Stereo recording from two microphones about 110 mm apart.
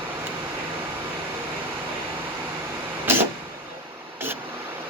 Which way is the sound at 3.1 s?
20° right (ahead or behind).